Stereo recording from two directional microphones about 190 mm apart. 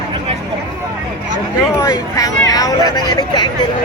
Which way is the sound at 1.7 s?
15° left (ahead or behind).